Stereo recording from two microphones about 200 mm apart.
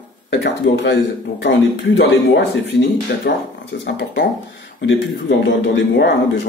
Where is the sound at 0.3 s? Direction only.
60° left (ahead or behind).